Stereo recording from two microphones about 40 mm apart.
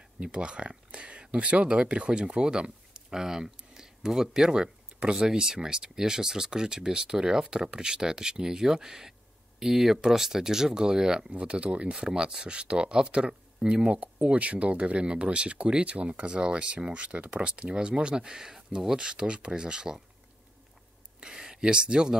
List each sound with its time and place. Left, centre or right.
0.2 s speech: right
12.0 s speech: centre
13.9 s speech: right
21.2 s a sound: centre